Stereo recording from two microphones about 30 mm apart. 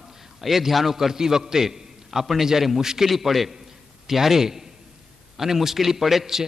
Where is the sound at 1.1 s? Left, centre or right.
Centre.